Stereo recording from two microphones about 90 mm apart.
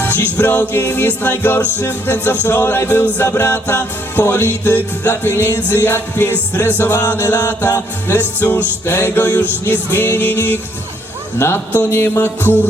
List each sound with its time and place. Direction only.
0.0 s music: 25° left (ahead or behind)